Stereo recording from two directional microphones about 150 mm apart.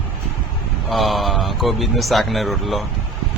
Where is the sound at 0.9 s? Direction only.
Centre (ahead or behind).